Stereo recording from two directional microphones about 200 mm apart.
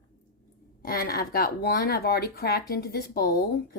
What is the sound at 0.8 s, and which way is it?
Speech, 45° left (ahead or behind).